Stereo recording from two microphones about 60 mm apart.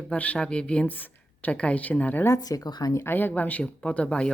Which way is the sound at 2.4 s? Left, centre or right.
Left.